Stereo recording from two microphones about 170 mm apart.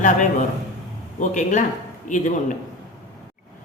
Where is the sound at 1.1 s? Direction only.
45° left (ahead or behind).